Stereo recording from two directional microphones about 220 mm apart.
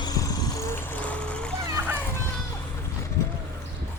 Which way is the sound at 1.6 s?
15° right (ahead or behind).